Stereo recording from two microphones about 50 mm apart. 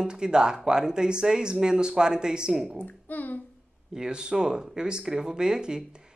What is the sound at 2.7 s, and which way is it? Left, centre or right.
Speech, left.